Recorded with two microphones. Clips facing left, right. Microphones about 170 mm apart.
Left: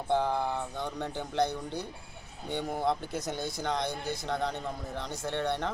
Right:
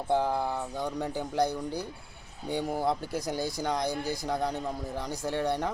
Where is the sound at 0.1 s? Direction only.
10° right (ahead or behind).